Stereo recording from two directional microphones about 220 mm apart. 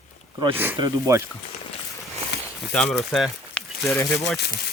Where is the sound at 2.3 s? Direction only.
50° left (ahead or behind).